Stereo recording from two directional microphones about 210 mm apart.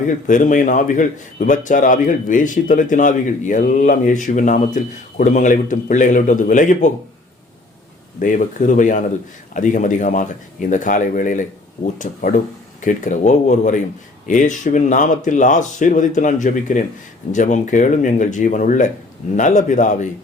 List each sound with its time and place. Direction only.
0.0 s a man's voice: 40° left (ahead or behind)
8.2 s a man's voice: 40° left (ahead or behind)
12.8 s a man's voice: 35° left (ahead or behind)